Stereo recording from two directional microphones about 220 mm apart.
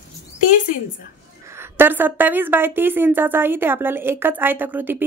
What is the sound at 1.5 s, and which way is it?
A woman's voice, 10° right (ahead or behind).